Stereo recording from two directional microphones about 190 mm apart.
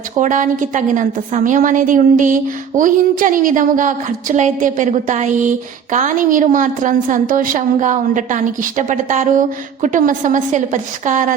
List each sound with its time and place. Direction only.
0.2 s a woman's voice: 40° right (ahead or behind)